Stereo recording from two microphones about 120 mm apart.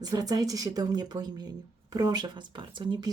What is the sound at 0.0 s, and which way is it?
Speech, 30° right (ahead or behind).